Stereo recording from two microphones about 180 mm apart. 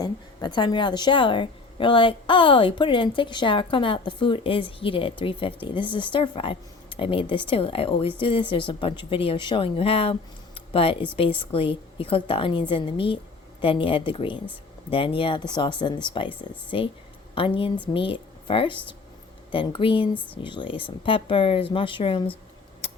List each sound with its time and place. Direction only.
0.0 s a woman's voice: 25° left (ahead or behind)
20.1 s speech: 10° left (ahead or behind)
20.4 s a woman's voice: 25° left (ahead or behind)
22.8 s a sound: 35° left (ahead or behind)